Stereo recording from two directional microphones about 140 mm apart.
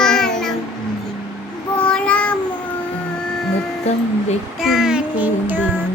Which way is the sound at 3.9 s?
50° left (ahead or behind).